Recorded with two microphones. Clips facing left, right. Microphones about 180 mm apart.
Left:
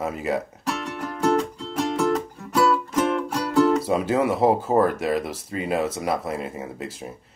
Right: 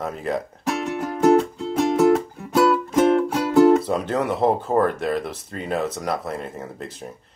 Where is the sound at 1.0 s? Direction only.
25° right (ahead or behind).